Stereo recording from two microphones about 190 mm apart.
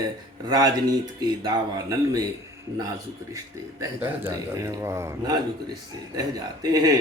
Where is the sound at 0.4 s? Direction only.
20° right (ahead or behind).